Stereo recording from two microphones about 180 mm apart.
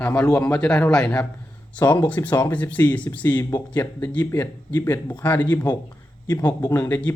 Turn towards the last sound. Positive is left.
turn(degrees=10)  # may be behind; listen again after turning